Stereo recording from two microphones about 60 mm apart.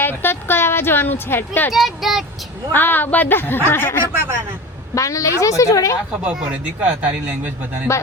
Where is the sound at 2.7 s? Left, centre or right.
Left.